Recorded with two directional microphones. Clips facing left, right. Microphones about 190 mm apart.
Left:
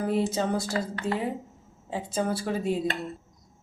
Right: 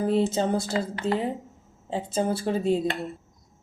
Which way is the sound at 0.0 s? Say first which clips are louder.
Right 3 dB; 25° right (ahead or behind).